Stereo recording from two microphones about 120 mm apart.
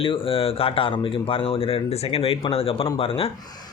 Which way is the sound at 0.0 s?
50° left (ahead or behind).